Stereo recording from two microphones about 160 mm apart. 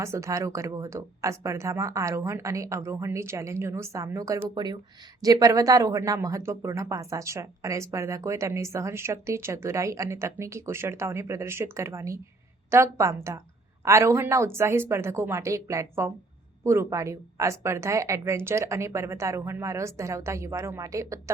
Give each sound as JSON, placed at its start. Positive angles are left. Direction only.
{"t": 0.0, "sound": "speech", "side_deg": -20}